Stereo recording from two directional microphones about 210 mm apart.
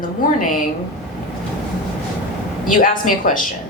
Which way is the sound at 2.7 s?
40° left (ahead or behind).